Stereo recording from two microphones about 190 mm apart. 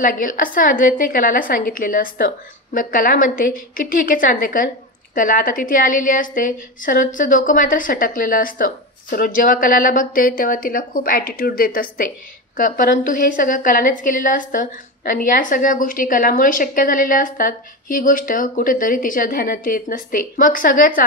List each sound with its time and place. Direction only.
0.0 s a woman's voice: 45° left (ahead or behind)